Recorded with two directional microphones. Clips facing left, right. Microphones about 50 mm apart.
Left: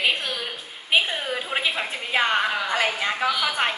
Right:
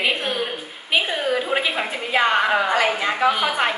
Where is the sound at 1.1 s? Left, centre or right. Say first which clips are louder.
Right 6 dB; centre.